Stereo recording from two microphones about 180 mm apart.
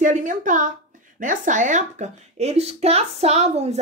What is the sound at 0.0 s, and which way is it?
A woman's voice, 45° right (ahead or behind).